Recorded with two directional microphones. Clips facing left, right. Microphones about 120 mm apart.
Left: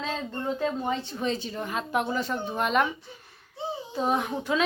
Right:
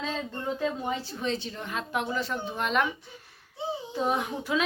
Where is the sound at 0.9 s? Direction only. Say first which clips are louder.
Left 2 dB; centre (ahead or behind).